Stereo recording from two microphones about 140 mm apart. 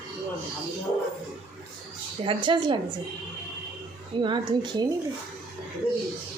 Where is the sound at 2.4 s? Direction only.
35° right (ahead or behind).